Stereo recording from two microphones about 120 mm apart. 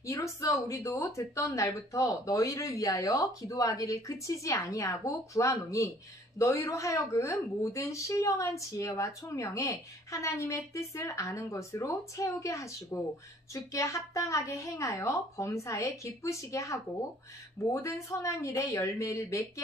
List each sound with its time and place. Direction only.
0.0 s a woman's voice: 25° left (ahead or behind)